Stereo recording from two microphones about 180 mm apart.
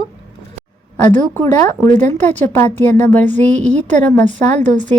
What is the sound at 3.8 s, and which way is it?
Speech, 40° right (ahead or behind).